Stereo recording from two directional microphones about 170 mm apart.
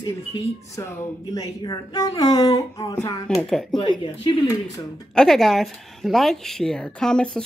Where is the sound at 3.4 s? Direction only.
Centre (ahead or behind).